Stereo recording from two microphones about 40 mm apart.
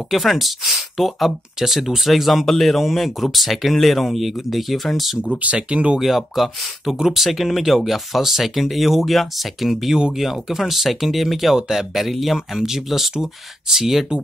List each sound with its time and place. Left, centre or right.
0.1 s speech: centre
5.4 s speech: right
5.9 s speech: centre